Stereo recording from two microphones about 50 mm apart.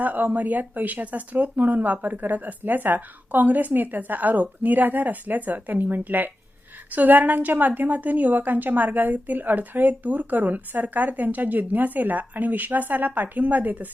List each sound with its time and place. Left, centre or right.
0.0 s a woman's voice: right